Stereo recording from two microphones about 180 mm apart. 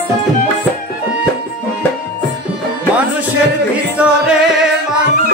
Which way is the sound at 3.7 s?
5° right (ahead or behind).